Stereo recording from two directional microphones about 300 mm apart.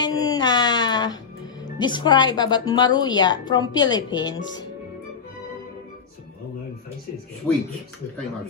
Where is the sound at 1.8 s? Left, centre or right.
Centre.